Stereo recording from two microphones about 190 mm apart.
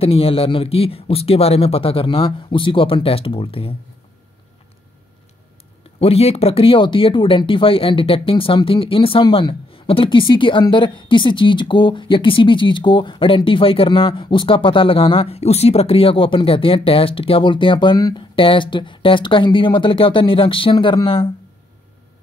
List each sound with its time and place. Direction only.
0.0 s speech: 30° left (ahead or behind)
5.9 s speech: 30° left (ahead or behind)